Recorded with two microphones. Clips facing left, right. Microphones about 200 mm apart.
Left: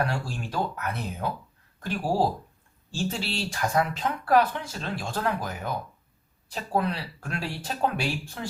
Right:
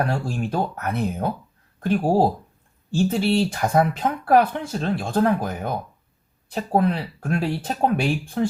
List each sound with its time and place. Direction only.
0.3 s speech: 50° right (ahead or behind)